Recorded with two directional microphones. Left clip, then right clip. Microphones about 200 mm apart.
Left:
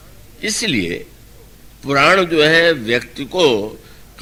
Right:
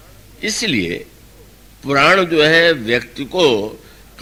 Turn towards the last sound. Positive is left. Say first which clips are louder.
# even
turn(degrees=-40)  # may be behind; listen again after turning